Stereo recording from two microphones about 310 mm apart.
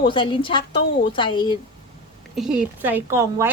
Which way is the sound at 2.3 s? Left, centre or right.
Centre.